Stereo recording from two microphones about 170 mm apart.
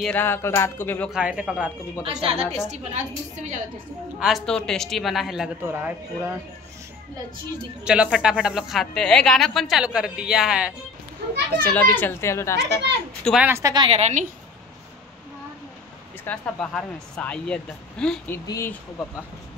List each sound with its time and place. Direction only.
0.0 s speech: 10° left (ahead or behind)
1.1 s speech: 5° right (ahead or behind)
2.2 s a woman's voice: 40° right (ahead or behind)
4.2 s speech: centre (ahead or behind)
7.8 s speech: 5° right (ahead or behind)
11.6 s speech: 10° left (ahead or behind)
13.2 s speech: centre (ahead or behind)
13.5 s a woman's voice: 15° right (ahead or behind)
13.7 s a woman's voice: 35° right (ahead or behind)
16.3 s speech: 10° left (ahead or behind)